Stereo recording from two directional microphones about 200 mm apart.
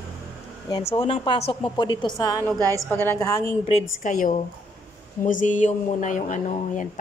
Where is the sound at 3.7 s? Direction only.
35° left (ahead or behind).